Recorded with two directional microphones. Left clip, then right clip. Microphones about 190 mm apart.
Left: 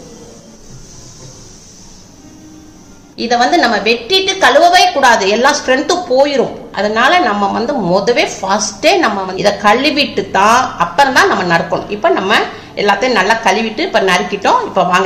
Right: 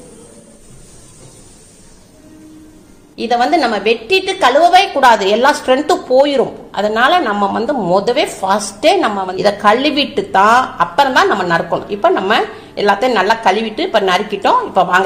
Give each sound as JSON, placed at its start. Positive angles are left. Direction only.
{"t": 3.2, "sound": "a woman's voice", "side_deg": -35}